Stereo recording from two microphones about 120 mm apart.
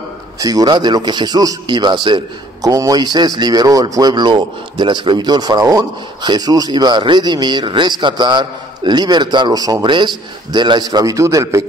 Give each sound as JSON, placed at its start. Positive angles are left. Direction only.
{"t": 0.4, "sound": "speech", "side_deg": -30}
{"t": 2.7, "sound": "speech", "side_deg": -30}